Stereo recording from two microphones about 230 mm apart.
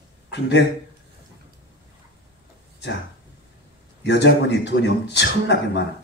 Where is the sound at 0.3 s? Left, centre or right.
Left.